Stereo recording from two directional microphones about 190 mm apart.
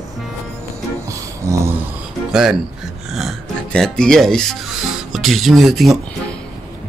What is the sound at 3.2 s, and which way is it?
Speech, centre (ahead or behind).